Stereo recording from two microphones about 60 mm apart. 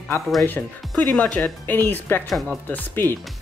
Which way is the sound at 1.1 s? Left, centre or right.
Left.